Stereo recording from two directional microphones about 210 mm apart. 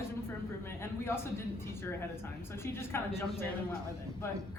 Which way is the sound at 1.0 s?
10° left (ahead or behind).